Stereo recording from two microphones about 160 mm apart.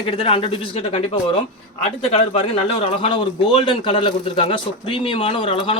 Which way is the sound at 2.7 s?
35° left (ahead or behind).